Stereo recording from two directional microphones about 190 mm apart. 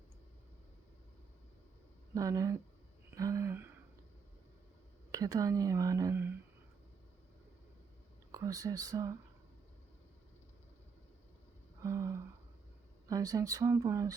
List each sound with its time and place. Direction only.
2.1 s speech: 15° right (ahead or behind)
5.1 s speech: 20° right (ahead or behind)
8.3 s speech: 20° right (ahead or behind)
11.8 s speech: 15° right (ahead or behind)